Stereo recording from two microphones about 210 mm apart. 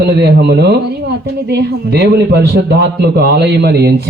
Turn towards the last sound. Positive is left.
turn(degrees=-50)  # may be behind; listen again after turning